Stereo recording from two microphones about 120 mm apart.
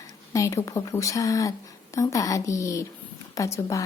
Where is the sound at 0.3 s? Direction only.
25° left (ahead or behind).